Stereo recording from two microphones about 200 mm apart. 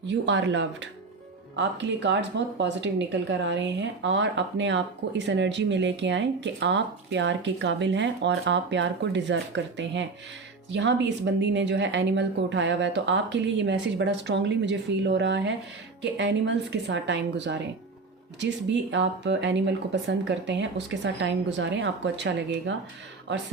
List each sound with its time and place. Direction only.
0.1 s a woman's voice: 60° right (ahead or behind)
18.9 s a woman's voice: 65° right (ahead or behind)